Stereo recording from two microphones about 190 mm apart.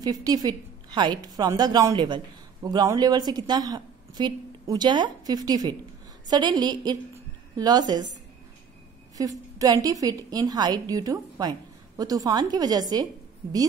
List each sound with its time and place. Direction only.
0.0 s a woman's voice: 20° right (ahead or behind)
9.1 s a woman's voice: 20° right (ahead or behind)